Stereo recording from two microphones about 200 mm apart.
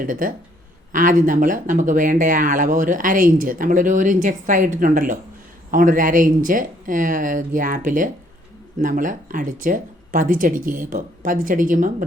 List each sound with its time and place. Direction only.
0.0 s speech: 45° right (ahead or behind)